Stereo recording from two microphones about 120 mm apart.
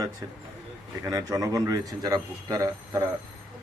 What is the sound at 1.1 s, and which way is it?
A man's voice, 30° right (ahead or behind).